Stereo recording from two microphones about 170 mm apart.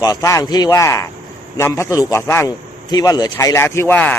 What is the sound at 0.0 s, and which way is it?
A man's voice, 20° left (ahead or behind).